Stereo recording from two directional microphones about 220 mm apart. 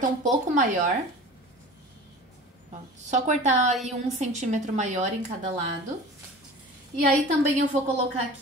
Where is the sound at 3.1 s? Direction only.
30° right (ahead or behind).